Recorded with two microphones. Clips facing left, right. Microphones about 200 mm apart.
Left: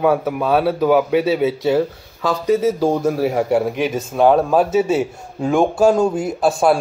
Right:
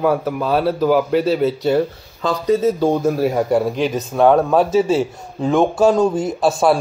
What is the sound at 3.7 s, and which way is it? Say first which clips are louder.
Speech: right 1 dB; 10° left (ahead or behind).